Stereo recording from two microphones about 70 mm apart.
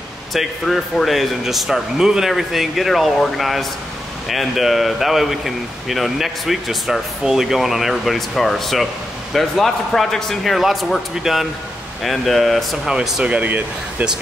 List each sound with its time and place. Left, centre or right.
0.3 s speech: centre
12.9 s speech: centre